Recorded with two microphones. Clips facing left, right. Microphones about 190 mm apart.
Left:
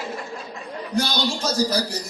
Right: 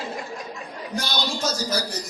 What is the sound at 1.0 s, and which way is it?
Speech, 30° left (ahead or behind).